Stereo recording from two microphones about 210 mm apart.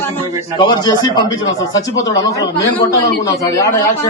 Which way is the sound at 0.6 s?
20° left (ahead or behind).